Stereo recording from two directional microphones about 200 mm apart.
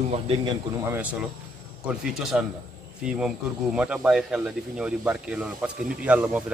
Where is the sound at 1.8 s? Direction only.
Centre (ahead or behind).